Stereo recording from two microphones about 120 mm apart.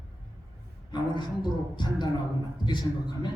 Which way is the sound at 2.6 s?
40° left (ahead or behind).